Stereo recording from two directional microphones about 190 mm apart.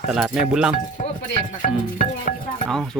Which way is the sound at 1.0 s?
45° left (ahead or behind).